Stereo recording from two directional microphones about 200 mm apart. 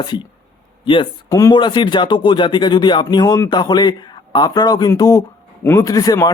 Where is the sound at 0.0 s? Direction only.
25° left (ahead or behind).